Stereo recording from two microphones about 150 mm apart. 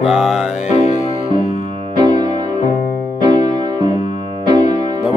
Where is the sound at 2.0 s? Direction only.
30° right (ahead or behind).